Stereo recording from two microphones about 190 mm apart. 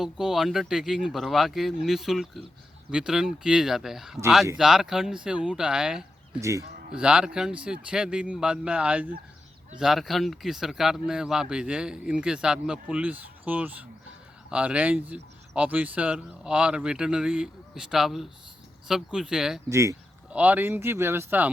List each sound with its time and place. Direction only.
0.0 s speech: centre (ahead or behind)
6.4 s speech: 15° right (ahead or behind)
6.9 s speech: 5° right (ahead or behind)
19.7 s speech: 15° right (ahead or behind)